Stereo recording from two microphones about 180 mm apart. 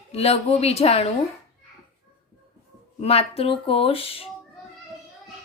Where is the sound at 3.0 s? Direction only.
35° left (ahead or behind).